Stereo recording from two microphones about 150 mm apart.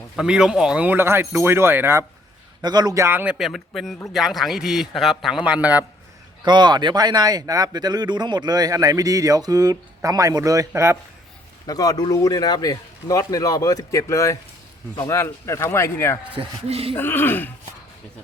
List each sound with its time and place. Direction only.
0.2 s speech: 5° right (ahead or behind)
2.6 s a man's voice: 25° right (ahead or behind)
3.3 s a man's voice: centre (ahead or behind)
6.4 s a man's voice: 30° right (ahead or behind)
11.6 s speech: 25° left (ahead or behind)
16.3 s speech: 40° right (ahead or behind)
16.9 s speech: 15° left (ahead or behind)